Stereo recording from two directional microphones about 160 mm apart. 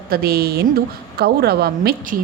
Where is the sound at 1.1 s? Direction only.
90° right; by 2.1 s 75° right (ahead or behind).